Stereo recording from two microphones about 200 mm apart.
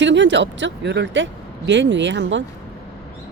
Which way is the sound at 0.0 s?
65° right (ahead or behind).